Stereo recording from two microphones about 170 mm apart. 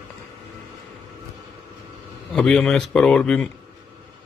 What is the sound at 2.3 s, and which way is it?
Speech, 5° left (ahead or behind).